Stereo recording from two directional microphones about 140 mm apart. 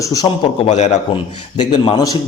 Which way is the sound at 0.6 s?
50° left (ahead or behind).